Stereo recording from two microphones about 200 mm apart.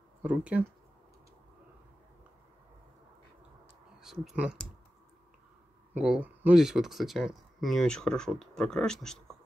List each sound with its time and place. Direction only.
0.2 s speech: 5° right (ahead or behind)
4.0 s speech: centre (ahead or behind)
5.9 s speech: 5° right (ahead or behind)